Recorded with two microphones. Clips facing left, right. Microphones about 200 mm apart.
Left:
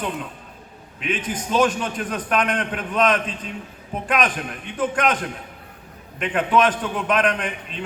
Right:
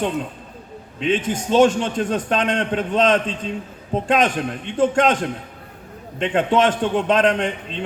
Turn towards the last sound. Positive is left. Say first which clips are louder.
# right 5 dB
turn(degrees=-25)  # may be behind; listen again after turning